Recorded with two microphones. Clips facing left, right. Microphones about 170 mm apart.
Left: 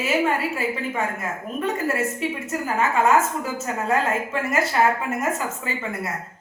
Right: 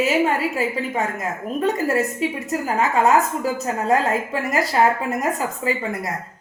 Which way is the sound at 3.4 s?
30° right (ahead or behind).